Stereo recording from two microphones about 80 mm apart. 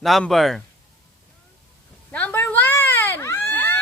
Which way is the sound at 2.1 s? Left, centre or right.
Left.